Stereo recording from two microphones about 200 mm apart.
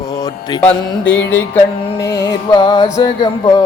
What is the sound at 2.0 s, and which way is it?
Music, 15° left (ahead or behind).